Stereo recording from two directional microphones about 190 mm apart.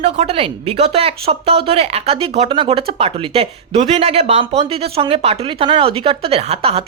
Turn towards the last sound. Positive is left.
turn(degrees=-30)  # may be behind; listen again after turning